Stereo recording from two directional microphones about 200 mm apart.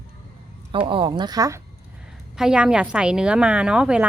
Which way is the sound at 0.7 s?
25° right (ahead or behind).